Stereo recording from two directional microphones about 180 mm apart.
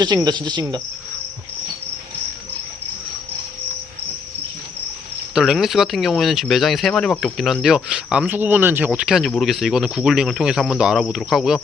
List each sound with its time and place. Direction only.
0.3 s speech: 25° right (ahead or behind)
5.3 s speech: centre (ahead or behind)